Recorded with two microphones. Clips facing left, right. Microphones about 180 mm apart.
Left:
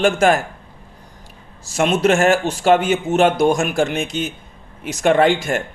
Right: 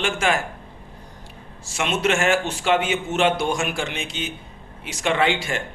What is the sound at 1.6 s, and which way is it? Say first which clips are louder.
Speech: left 7 dB; 40° left (ahead or behind).